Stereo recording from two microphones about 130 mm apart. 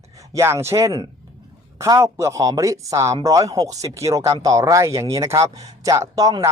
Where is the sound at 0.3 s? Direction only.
20° right (ahead or behind).